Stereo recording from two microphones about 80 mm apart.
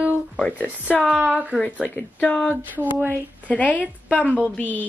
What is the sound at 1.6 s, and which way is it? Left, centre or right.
A woman's voice, centre.